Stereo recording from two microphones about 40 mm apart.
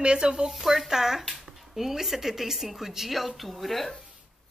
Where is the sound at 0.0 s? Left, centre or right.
Right.